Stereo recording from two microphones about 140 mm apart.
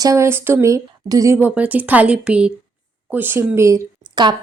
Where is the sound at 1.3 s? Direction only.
10° right (ahead or behind).